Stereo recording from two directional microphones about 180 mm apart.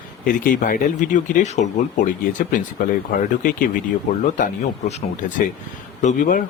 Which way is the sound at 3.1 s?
50° left (ahead or behind).